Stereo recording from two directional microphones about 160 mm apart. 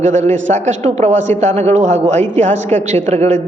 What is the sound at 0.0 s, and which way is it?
A woman's voice, 50° right (ahead or behind).